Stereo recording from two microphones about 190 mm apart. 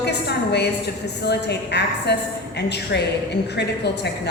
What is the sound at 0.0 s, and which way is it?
A woman's voice, 60° left (ahead or behind).